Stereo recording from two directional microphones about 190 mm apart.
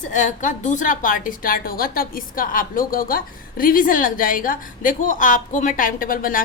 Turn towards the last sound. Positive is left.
turn(degrees=50)  # may be behind; listen again after turning